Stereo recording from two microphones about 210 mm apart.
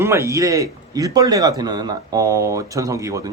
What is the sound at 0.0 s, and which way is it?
A man's voice, 15° right (ahead or behind).